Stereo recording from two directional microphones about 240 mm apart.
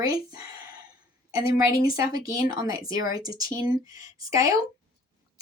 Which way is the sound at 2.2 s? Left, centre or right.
Centre.